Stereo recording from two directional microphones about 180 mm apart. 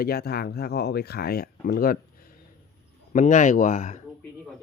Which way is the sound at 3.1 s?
45° left (ahead or behind).